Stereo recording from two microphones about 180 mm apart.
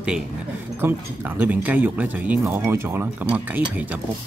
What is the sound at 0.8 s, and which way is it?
Speech, 10° right (ahead or behind).